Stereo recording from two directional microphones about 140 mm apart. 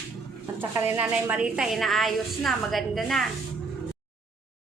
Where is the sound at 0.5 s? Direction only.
15° right (ahead or behind); by 3.3 s centre (ahead or behind).